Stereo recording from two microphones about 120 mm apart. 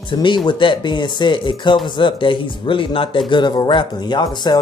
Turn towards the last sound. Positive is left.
turn(degrees=35)  # may be behind; listen again after turning